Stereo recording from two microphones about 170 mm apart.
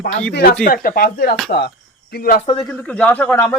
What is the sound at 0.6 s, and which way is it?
Speech, 55° left (ahead or behind).